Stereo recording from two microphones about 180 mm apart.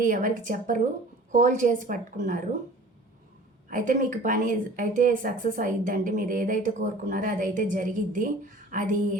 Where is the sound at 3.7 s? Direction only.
45° right (ahead or behind).